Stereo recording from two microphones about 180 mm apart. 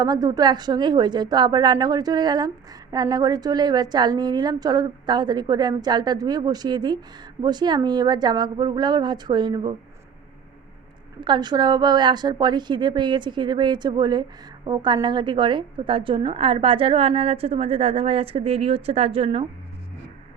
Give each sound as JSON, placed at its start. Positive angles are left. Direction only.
{"t": 0.0, "sound": "a woman's voice", "side_deg": -20}
{"t": 11.2, "sound": "a woman's voice", "side_deg": -25}